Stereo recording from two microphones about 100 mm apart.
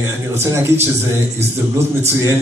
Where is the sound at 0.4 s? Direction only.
25° right (ahead or behind).